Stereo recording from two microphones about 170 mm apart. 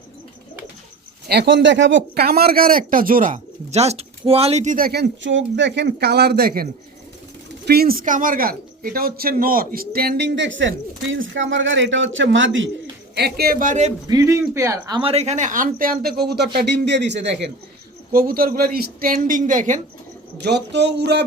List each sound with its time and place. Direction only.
1.3 s speech: 80° right; by 4.9 s 45° right (ahead or behind)
4.9 s a man's voice: 70° right (ahead or behind); by 12.6 s 90° right
13.1 s speech: 70° right (ahead or behind); by 13.9 s 45° right (ahead or behind)
14.1 s speech: 20° right (ahead or behind)
14.9 s speech: 35° right (ahead or behind); by 16.5 s 70° right (ahead or behind)
16.6 s speech: 85° right
18.1 s speech: 60° right (ahead or behind)
20.4 s a sound: 85° right